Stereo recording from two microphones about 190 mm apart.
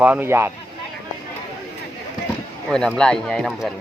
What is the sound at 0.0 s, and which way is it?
Speech, 10° right (ahead or behind).